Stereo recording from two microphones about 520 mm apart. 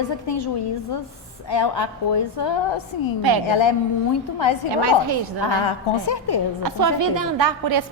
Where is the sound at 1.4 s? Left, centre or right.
Left.